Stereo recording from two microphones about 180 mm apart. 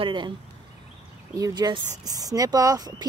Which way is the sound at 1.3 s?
20° right (ahead or behind).